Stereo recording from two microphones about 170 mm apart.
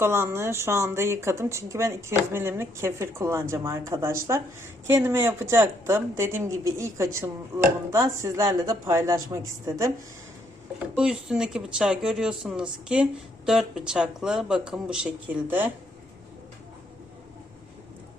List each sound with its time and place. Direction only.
0.0 s speech: 15° right (ahead or behind)
10.9 s speech: 5° right (ahead or behind)